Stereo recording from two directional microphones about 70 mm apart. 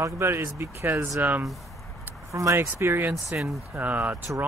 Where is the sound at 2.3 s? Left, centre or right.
Right.